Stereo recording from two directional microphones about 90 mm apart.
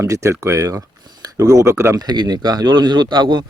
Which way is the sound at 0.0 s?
30° right (ahead or behind).